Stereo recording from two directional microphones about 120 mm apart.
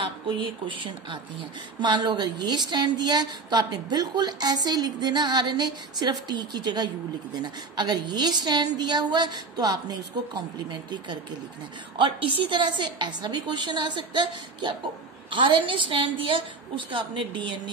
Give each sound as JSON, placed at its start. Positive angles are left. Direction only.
{"t": 0.0, "sound": "a woman's voice", "side_deg": -45}